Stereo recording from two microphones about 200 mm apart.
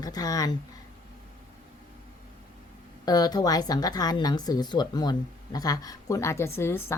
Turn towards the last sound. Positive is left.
turn(degrees=10)  # may be behind; listen again after turning